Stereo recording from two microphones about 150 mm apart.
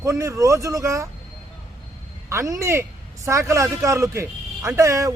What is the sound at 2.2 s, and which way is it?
A man's voice, 20° right (ahead or behind).